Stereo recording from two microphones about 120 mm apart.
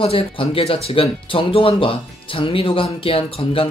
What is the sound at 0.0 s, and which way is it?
Speech, 50° left (ahead or behind).